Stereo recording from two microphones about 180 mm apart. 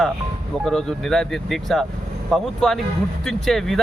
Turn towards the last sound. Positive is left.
turn(degrees=0)  # may be behind; listen again after turning